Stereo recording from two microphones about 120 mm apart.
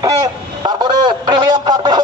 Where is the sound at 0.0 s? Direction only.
35° right (ahead or behind).